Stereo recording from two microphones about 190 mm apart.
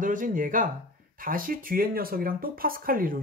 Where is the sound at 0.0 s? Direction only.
45° right (ahead or behind).